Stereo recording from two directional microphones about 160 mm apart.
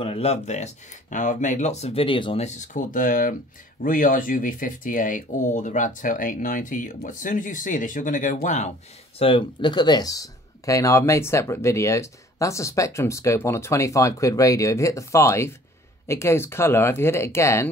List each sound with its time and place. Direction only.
0.0 s speech: 40° left (ahead or behind)
2.4 s speech: 50° left (ahead or behind)
9.2 s speech: 30° left (ahead or behind); by 17.6 s 15° left (ahead or behind)